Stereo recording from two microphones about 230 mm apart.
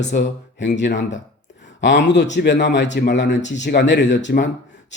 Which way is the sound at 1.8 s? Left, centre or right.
Left.